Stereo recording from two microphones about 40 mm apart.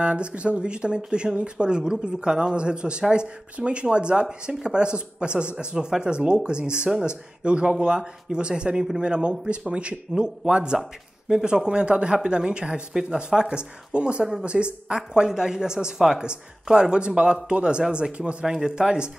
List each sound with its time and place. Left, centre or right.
0.0 s speech: right
5.9 s speech: centre
6.1 s speech: right